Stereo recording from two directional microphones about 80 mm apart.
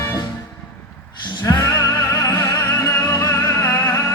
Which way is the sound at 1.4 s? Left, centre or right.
Left.